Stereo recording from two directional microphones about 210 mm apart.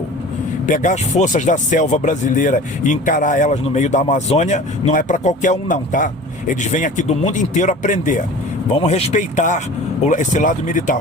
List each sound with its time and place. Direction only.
0.7 s speech: 40° left (ahead or behind)